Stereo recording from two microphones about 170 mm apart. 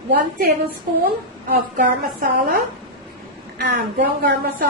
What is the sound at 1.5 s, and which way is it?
A woman's voice, 60° right (ahead or behind).